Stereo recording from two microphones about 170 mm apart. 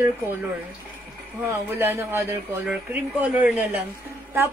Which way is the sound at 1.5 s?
15° right (ahead or behind).